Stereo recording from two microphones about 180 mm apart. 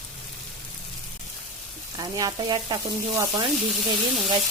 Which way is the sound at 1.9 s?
20° right (ahead or behind).